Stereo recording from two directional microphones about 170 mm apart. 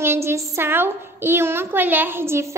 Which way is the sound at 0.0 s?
15° right (ahead or behind).